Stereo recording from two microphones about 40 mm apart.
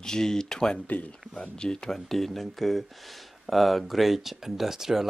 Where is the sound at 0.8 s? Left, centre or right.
Left.